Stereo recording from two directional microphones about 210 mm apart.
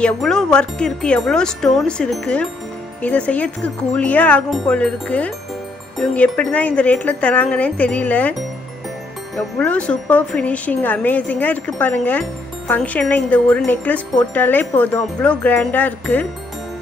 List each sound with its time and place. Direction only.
0.0 s speech: 5° left (ahead or behind)
9.4 s speech: 5° left (ahead or behind)